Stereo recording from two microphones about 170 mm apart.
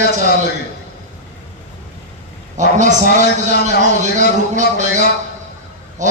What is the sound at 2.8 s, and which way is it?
A man's voice, 45° right (ahead or behind).